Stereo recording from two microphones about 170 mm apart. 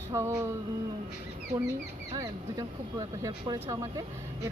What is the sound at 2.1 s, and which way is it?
Speech, 25° right (ahead or behind).